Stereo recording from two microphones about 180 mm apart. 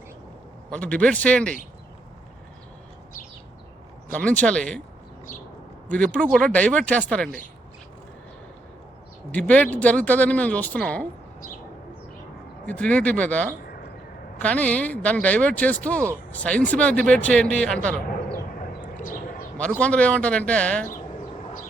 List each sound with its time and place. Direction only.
0.7 s speech: 5° left (ahead or behind)
4.1 s speech: 5° left (ahead or behind)
6.1 s speech: 5° left (ahead or behind)
9.3 s speech: 5° left (ahead or behind)
12.6 s speech: 10° left (ahead or behind)
17.8 s a sound: 5° left (ahead or behind)
19.0 s a sound: 50° left (ahead or behind)
19.5 s speech: 5° left (ahead or behind)